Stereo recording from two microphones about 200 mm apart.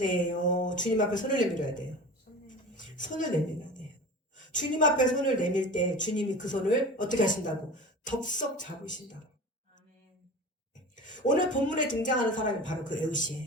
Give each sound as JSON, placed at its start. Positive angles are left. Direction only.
{"t": 0.0, "sound": "speech", "side_deg": 40}
{"t": 2.7, "sound": "a sound", "side_deg": 40}
{"t": 4.5, "sound": "speech", "side_deg": 40}
{"t": 10.9, "sound": "speech", "side_deg": 40}